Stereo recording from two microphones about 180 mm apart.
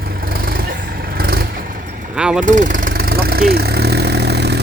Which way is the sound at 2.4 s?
45° right (ahead or behind).